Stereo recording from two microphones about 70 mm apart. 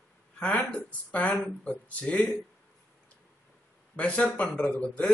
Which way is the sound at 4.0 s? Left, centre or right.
Centre.